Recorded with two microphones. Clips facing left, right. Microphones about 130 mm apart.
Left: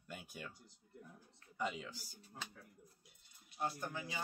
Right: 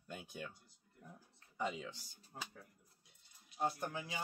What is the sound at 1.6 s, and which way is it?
Speech, centre (ahead or behind).